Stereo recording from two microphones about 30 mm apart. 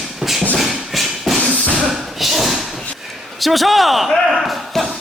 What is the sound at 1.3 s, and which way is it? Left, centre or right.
Music, centre.